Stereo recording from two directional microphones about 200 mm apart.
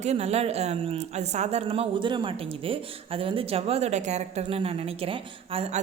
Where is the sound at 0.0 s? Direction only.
35° right (ahead or behind).